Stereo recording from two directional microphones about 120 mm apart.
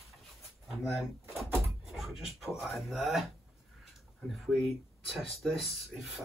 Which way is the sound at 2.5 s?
Centre (ahead or behind).